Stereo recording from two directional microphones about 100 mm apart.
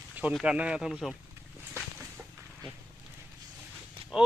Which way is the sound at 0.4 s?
10° right (ahead or behind).